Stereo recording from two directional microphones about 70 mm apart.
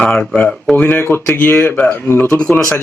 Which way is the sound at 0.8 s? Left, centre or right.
Left.